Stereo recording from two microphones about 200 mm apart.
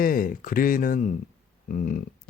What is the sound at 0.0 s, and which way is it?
Speech, 45° left (ahead or behind).